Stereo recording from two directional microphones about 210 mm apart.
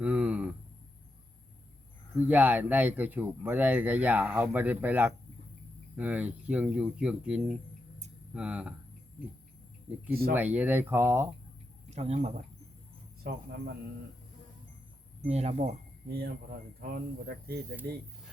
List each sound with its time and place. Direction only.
0.0 s a sound: 5° right (ahead or behind)
2.1 s speech: 10° right (ahead or behind)
10.1 s speech: 45° right (ahead or behind)
10.3 s speech: 5° right (ahead or behind)
11.9 s speech: 30° right (ahead or behind)
13.2 s speech: 50° right (ahead or behind)
15.3 s speech: 30° right (ahead or behind)
16.8 s speech: 45° right (ahead or behind)